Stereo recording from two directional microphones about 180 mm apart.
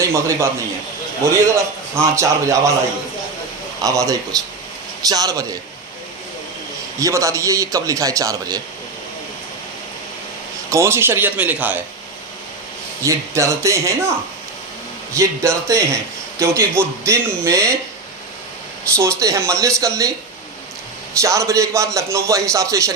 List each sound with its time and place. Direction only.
0.0 s a man's voice: 15° right (ahead or behind)
3.8 s speech: 20° right (ahead or behind)
7.0 s a man's voice: 15° right (ahead or behind)
10.7 s a man's voice: 15° right (ahead or behind)
13.0 s a man's voice: 15° right (ahead or behind)
15.1 s a man's voice: 15° right (ahead or behind)
18.9 s a man's voice: 15° right (ahead or behind)
21.2 s a man's voice: 15° right (ahead or behind)